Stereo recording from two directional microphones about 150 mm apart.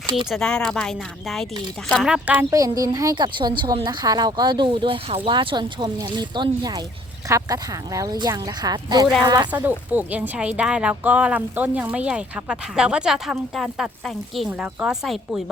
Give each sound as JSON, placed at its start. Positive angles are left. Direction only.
{"t": 0.3, "sound": "a woman's voice", "side_deg": 5}
{"t": 2.5, "sound": "speech", "side_deg": -25}
{"t": 9.5, "sound": "a woman's voice", "side_deg": -10}